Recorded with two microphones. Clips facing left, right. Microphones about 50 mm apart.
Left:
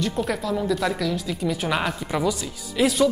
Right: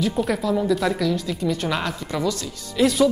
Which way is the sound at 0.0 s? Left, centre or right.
Centre.